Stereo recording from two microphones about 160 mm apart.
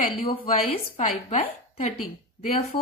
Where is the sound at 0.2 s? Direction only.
35° left (ahead or behind).